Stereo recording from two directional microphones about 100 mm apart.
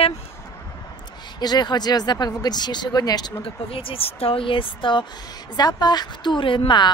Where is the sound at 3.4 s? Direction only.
65° left (ahead or behind).